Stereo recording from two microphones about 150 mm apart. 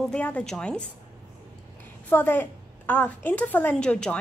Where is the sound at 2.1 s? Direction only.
15° left (ahead or behind).